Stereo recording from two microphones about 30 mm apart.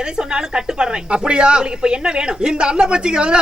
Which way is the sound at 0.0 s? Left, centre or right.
Right.